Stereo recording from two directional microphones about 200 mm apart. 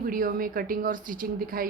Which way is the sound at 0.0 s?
45° right (ahead or behind).